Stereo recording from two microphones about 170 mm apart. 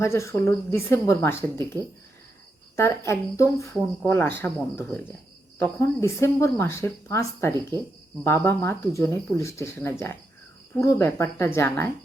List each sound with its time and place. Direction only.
0.0 s speech: 15° left (ahead or behind)